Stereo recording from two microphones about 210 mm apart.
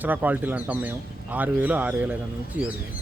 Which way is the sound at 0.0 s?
10° right (ahead or behind).